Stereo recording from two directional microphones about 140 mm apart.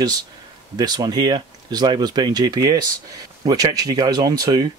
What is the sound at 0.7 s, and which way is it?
Speech, 30° right (ahead or behind).